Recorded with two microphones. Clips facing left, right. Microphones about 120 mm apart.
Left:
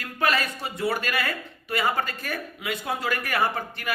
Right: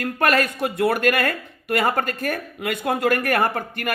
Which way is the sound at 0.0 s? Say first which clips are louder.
Right 5 dB; 55° right (ahead or behind).